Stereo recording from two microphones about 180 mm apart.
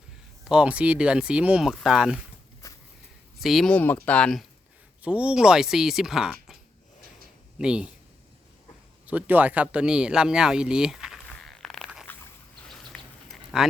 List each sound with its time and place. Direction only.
0.4 s speech: 5° right (ahead or behind)
2.6 s a sound: 20° left (ahead or behind)
3.4 s speech: centre (ahead or behind)
5.0 s speech: 5° right (ahead or behind)
7.6 s speech: 5° right (ahead or behind)
9.0 s speech: 10° right (ahead or behind)
12.6 s a sound: centre (ahead or behind)